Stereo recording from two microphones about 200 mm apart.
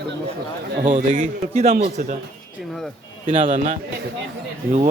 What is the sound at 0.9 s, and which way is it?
Speech, 40° right (ahead or behind).